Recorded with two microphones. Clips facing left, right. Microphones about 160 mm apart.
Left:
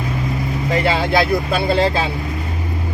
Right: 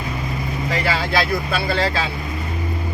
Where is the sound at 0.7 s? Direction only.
20° left (ahead or behind).